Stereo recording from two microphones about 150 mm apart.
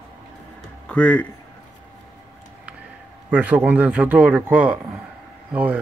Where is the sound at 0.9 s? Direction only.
10° left (ahead or behind).